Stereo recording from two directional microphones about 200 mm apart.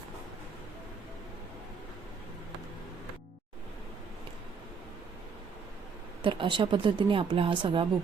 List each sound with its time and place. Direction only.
6.2 s speech: 25° right (ahead or behind)